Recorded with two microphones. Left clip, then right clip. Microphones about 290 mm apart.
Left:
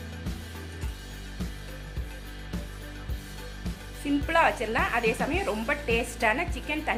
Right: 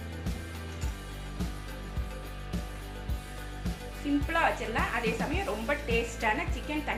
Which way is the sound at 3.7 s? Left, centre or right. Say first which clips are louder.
Right 2 dB; centre.